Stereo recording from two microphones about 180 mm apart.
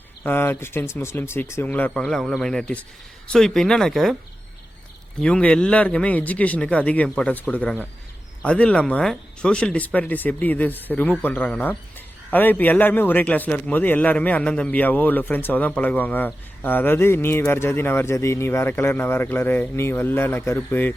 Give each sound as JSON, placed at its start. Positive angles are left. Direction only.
{"t": 0.2, "sound": "speech", "side_deg": 10}
{"t": 5.2, "sound": "speech", "side_deg": 5}